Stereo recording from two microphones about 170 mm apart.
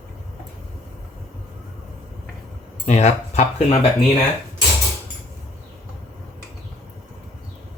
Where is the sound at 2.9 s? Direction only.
40° left (ahead or behind).